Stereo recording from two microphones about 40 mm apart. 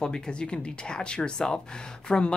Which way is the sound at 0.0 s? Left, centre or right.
Centre.